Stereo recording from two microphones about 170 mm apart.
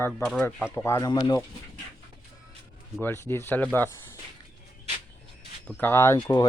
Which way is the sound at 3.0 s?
15° left (ahead or behind).